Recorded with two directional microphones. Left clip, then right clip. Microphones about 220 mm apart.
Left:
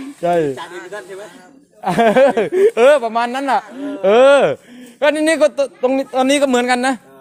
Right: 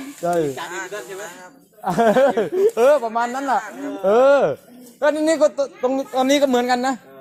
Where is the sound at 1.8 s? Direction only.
35° left (ahead or behind).